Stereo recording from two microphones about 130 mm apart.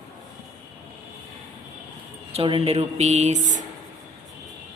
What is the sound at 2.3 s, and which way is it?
Speech, 45° right (ahead or behind).